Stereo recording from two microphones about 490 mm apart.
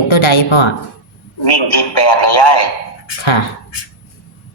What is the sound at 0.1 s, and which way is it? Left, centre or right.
Speech, left.